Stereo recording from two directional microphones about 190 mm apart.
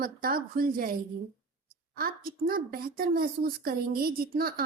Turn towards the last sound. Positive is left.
turn(degrees=-50)  # may be behind; listen again after turning